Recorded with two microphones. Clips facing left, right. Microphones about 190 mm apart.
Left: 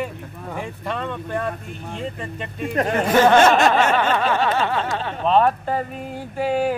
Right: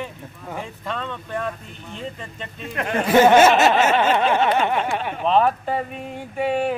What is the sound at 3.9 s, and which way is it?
Snicker, 25° right (ahead or behind).